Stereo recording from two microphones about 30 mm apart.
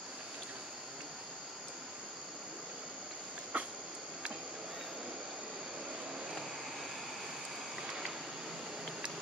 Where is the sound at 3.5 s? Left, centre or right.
Right.